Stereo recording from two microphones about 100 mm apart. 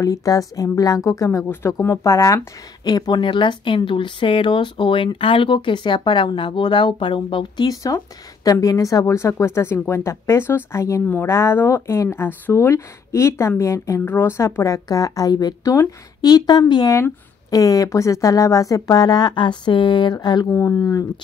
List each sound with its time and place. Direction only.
0.0 s speech: 35° left (ahead or behind)
16.9 s speech: 30° left (ahead or behind); by 20.4 s 50° left (ahead or behind)
20.4 s speech: 25° left (ahead or behind)